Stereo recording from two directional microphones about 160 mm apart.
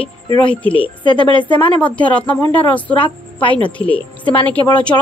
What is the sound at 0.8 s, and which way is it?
Speech, 30° left (ahead or behind).